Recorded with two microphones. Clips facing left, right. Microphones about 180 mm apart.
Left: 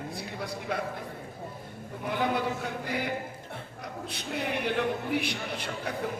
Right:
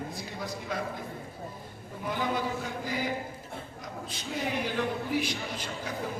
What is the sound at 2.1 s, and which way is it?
A man's voice, 60° left (ahead or behind).